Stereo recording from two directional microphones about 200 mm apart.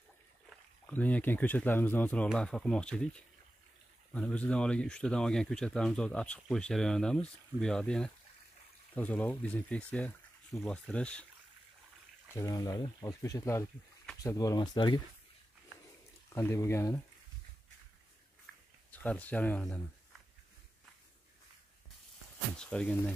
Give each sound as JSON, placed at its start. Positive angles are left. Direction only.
{"t": 0.5, "sound": "speech", "side_deg": 5}
{"t": 12.4, "sound": "speech", "side_deg": 15}
{"t": 16.3, "sound": "speech", "side_deg": 15}
{"t": 18.9, "sound": "speech", "side_deg": 5}
{"t": 22.6, "sound": "speech", "side_deg": 5}